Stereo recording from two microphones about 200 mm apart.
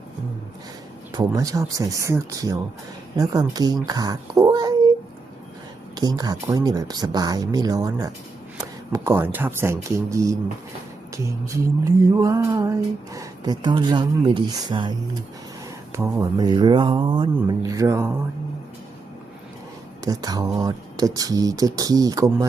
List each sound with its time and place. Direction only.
1.1 s speech: 15° right (ahead or behind)
6.0 s speech: 20° right (ahead or behind)
11.4 s speech: 15° right (ahead or behind)
15.9 s speech: 10° right (ahead or behind)
20.1 s speech: 20° right (ahead or behind)